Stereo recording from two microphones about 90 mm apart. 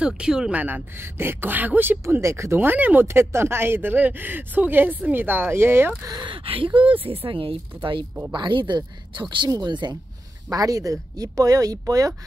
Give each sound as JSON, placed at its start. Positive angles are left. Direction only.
{"t": 0.0, "sound": "speech", "side_deg": -10}
{"t": 0.6, "sound": "speech", "side_deg": -20}
{"t": 6.0, "sound": "speech", "side_deg": -55}
{"t": 8.3, "sound": "speech", "side_deg": -60}
{"t": 10.5, "sound": "speech", "side_deg": -40}